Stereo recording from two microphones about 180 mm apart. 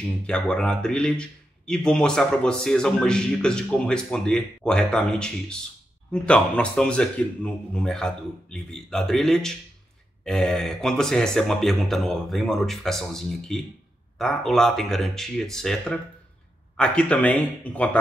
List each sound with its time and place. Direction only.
0.0 s a man's voice: 5° left (ahead or behind)